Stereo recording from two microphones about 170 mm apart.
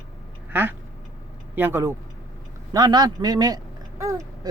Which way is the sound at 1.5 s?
10° right (ahead or behind).